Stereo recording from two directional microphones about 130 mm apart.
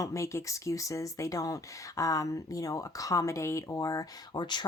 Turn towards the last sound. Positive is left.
turn(degrees=35)  # may be behind; listen again after turning